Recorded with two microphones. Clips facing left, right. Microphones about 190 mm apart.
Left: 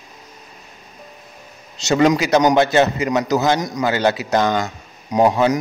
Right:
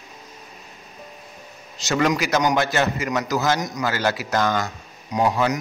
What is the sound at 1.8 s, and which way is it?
A man's voice, 25° left (ahead or behind).